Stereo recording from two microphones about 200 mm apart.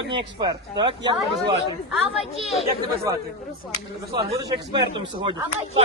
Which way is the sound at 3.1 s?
20° right (ahead or behind).